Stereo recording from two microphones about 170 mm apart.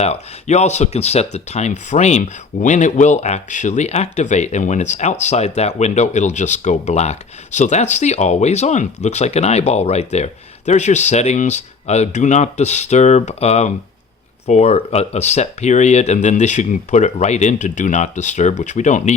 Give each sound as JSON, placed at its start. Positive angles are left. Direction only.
{"t": 0.0, "sound": "speech", "side_deg": 40}